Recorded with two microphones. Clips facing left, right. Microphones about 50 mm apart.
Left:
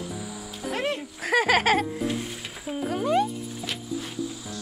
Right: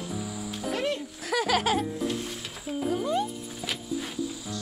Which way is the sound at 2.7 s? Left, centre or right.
Left.